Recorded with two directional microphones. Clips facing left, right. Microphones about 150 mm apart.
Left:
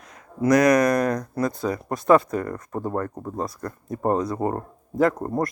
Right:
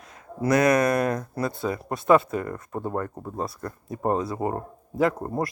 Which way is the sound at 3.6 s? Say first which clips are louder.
Left 3 dB; 20° right (ahead or behind).